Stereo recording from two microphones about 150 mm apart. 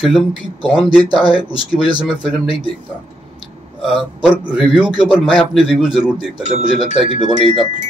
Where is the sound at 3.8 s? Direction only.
5° right (ahead or behind).